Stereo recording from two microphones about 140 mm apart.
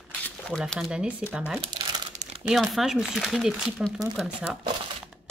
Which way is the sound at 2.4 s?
Centre (ahead or behind).